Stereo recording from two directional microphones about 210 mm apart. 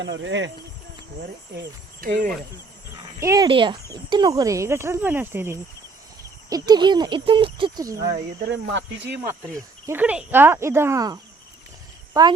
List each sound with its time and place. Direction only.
0.0 s speech: 60° right (ahead or behind)
1.5 s cricket: 55° right (ahead or behind)
3.2 s speech: 15° right (ahead or behind)
8.4 s speech: 60° right (ahead or behind)
9.2 s speech: 15° right (ahead or behind)